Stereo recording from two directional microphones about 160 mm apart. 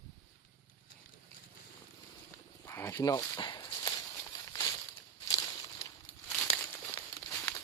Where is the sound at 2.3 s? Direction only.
15° left (ahead or behind).